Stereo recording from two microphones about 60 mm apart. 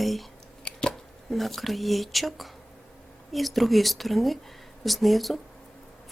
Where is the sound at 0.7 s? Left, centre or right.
Centre.